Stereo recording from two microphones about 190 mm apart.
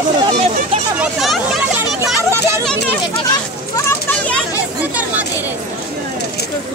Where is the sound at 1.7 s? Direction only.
10° right (ahead or behind).